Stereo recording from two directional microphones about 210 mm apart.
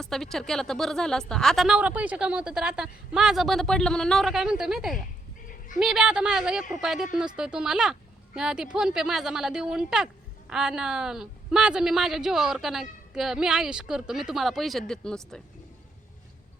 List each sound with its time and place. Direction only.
0.0 s a woman's voice: centre (ahead or behind)
5.5 s dog: 40° left (ahead or behind)
5.8 s a woman's voice: 5° right (ahead or behind)